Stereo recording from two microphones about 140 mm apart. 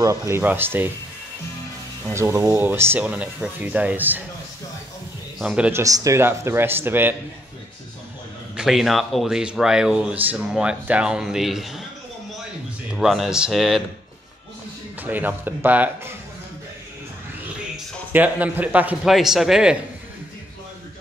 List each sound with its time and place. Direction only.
0.0 s speech: 20° right (ahead or behind)
2.1 s speech: 20° right (ahead or behind)
5.4 s speech: 5° right (ahead or behind)
5.7 s speech: 20° right (ahead or behind)
8.5 s speech: centre (ahead or behind)
12.9 s speech: centre (ahead or behind)
15.0 s speech: 10° right (ahead or behind)
18.1 s speech: 10° right (ahead or behind)